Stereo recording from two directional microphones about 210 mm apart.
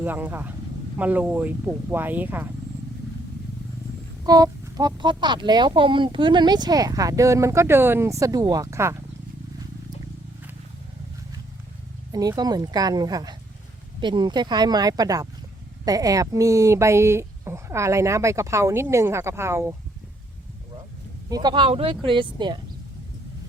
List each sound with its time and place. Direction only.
0.0 s speech: 10° right (ahead or behind)
4.2 s speech: 20° right (ahead or behind)
12.1 s speech: 15° right (ahead or behind)
21.2 s speech: 20° right (ahead or behind)